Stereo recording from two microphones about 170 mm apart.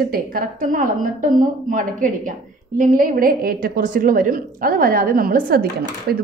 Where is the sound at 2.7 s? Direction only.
50° right (ahead or behind); by 6.2 s 70° right (ahead or behind).